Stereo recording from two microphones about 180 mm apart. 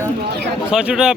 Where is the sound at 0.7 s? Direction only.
5° right (ahead or behind).